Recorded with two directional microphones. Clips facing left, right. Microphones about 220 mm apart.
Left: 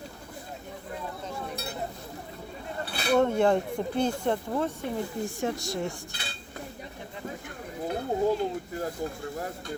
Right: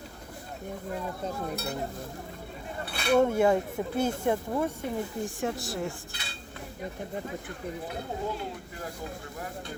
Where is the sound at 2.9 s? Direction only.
35° left (ahead or behind).